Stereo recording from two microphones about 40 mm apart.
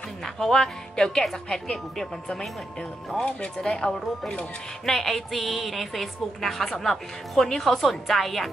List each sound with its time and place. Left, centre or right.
0.2 s speech: centre
4.8 s a woman's voice: centre